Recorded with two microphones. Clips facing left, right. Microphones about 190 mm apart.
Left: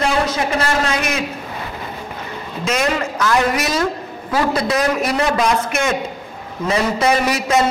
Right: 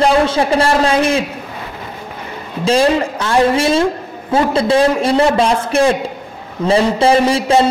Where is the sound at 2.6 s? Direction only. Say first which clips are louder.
Right 7 dB; 30° right (ahead or behind).